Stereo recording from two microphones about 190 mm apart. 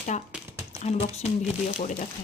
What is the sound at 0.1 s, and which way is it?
Speech, 40° left (ahead or behind).